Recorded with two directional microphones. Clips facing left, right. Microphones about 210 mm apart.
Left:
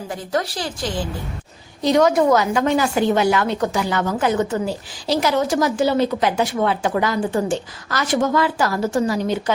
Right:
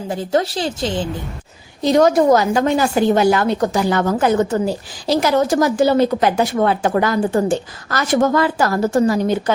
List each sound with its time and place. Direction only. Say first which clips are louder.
0.1 s a woman's voice: right 6 dB; 25° right (ahead or behind)
1.9 s a woman's voice: right 3 dB; 40° right (ahead or behind)